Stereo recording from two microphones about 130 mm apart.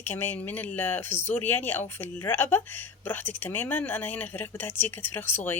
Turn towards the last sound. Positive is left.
turn(degrees=15)  # may be behind; listen again after turning